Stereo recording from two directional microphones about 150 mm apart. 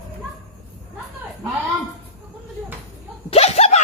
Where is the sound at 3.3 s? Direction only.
45° left (ahead or behind).